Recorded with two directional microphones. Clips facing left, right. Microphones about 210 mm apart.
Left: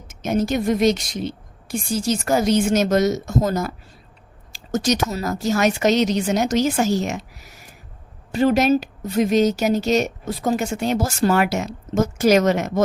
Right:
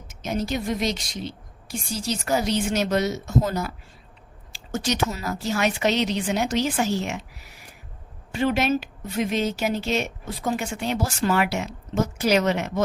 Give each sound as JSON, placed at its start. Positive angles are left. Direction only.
{"t": 0.1, "sound": "a woman's voice", "side_deg": 50}